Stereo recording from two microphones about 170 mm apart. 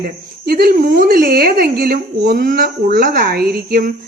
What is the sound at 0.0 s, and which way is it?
Speech, 65° right (ahead or behind).